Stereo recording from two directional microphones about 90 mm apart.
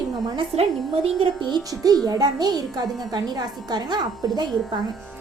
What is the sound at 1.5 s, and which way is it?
A child's voice, 45° right (ahead or behind).